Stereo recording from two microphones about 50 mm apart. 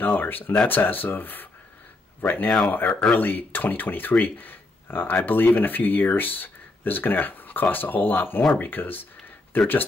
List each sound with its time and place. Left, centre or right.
0.0 s speech: left
2.9 s speech: centre
3.2 s speech: left